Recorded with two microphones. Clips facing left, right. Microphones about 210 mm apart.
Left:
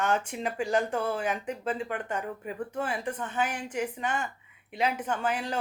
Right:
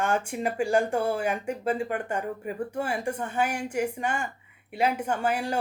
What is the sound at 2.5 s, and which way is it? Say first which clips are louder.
A woman's voice: right 2 dB; 10° right (ahead or behind).